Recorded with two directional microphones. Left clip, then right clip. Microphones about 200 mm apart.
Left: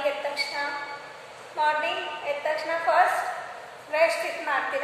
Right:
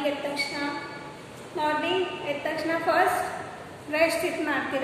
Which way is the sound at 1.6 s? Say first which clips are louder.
Left 3 dB; 5° right (ahead or behind).